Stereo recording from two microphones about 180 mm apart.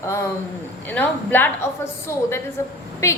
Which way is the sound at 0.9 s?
10° left (ahead or behind).